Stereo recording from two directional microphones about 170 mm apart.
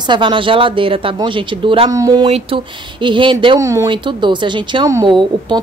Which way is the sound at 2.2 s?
35° right (ahead or behind).